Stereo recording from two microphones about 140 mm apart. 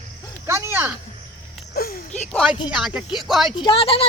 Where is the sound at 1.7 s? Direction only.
90° left.